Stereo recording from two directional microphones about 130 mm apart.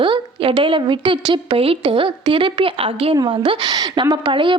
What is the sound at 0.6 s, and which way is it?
A woman's voice, 40° right (ahead or behind).